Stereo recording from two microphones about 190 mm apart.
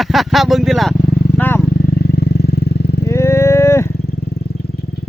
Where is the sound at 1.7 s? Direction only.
55° left (ahead or behind).